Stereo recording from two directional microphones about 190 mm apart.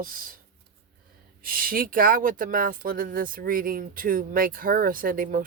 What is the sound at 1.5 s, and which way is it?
Speech, 50° right (ahead or behind).